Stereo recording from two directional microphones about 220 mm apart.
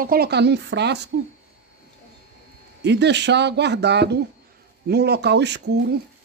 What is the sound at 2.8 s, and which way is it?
Speech, 50° right (ahead or behind).